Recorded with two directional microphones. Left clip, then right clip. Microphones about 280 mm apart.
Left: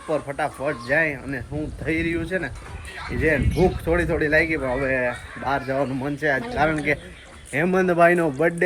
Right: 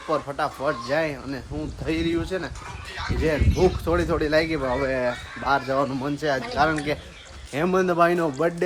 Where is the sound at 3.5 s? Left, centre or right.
Centre.